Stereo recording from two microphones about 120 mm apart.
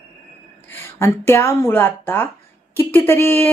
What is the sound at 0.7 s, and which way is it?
A woman's voice, 20° left (ahead or behind).